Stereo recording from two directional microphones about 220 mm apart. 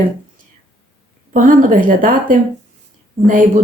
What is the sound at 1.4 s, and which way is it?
Speech, 40° right (ahead or behind).